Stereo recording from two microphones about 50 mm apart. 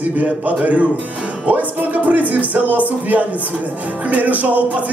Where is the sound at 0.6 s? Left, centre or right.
Right.